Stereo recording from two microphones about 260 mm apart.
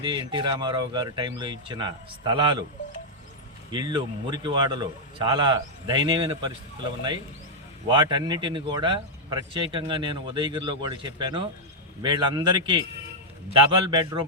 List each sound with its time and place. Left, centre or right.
0.3 s speech: centre
3.7 s speech: centre
7.9 s speech: centre